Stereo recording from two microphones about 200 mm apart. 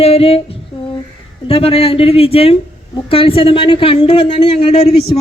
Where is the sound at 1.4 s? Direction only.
30° left (ahead or behind).